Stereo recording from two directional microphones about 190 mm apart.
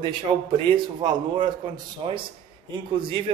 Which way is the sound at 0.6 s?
25° right (ahead or behind).